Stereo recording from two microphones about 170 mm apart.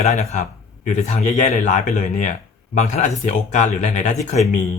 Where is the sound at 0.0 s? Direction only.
45° left (ahead or behind).